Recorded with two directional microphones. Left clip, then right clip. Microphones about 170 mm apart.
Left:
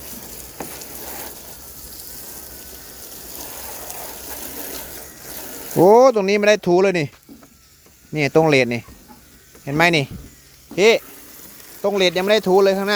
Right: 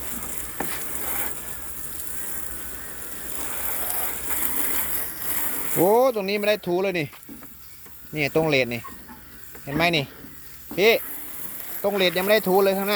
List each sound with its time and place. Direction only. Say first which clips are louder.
5.8 s speech: left 8 dB; 50° left (ahead or behind)
8.1 s speech: left 6 dB; 45° left (ahead or behind)